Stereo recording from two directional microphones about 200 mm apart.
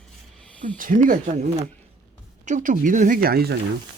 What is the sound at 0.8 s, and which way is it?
Speech, 45° right (ahead or behind).